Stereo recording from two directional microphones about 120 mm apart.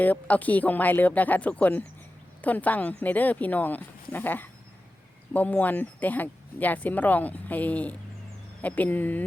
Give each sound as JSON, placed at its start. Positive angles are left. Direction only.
{"t": 0.0, "sound": "speech", "side_deg": 15}